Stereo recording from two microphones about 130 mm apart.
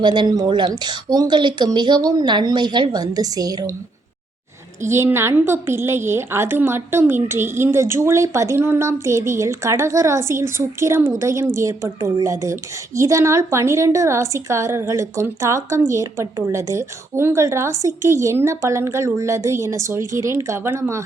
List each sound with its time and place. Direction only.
0.0 s speech: 35° right (ahead or behind)
4.9 s a woman's voice: 20° right (ahead or behind)